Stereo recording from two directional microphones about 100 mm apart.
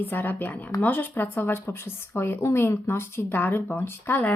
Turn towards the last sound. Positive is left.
turn(degrees=20)  # may be behind; listen again after turning